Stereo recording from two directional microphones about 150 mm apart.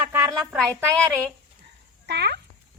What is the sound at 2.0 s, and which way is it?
Dog, 90° right.